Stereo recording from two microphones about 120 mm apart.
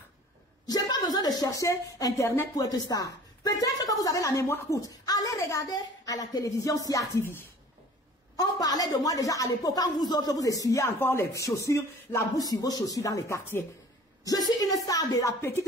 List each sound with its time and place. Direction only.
0.7 s a woman's voice: 35° left (ahead or behind)
8.4 s a woman's voice: 30° left (ahead or behind)